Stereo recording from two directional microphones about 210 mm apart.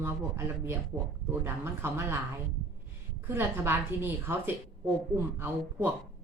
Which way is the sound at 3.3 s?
10° right (ahead or behind).